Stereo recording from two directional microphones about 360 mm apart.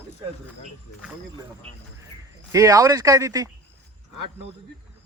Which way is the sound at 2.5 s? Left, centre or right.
Centre.